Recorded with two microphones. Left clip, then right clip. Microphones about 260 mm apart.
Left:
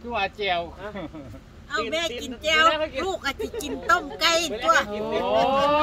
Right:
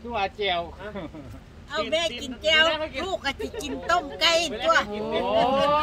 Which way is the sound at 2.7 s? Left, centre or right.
Left.